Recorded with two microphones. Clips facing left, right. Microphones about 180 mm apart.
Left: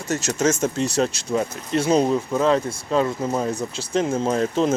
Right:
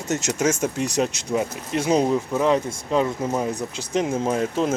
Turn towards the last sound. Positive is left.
turn(degrees=-10)  # may be behind; listen again after turning